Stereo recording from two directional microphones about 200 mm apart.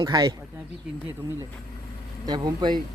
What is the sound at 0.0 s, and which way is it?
Speech, 20° right (ahead or behind).